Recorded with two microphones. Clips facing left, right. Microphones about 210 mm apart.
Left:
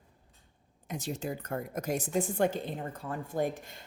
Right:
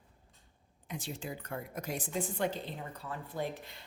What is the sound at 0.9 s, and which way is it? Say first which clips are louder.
A woman's voice: left 5 dB; 40° left (ahead or behind).